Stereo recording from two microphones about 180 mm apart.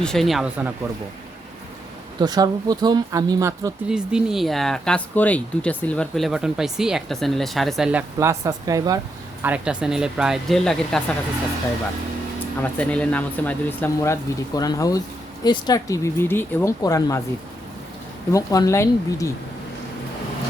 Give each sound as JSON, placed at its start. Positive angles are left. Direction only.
{"t": 0.0, "sound": "speech", "side_deg": 0}
{"t": 2.2, "sound": "speech", "side_deg": -20}
{"t": 3.8, "sound": "speech", "side_deg": -5}
{"t": 9.4, "sound": "speech", "side_deg": -5}
{"t": 12.6, "sound": "speech", "side_deg": 10}
{"t": 18.3, "sound": "speech", "side_deg": 20}